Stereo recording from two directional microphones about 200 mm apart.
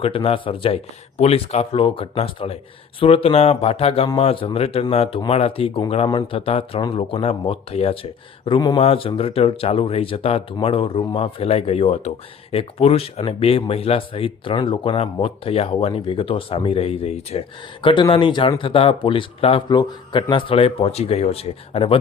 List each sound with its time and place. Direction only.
0.0 s speech: 30° left (ahead or behind)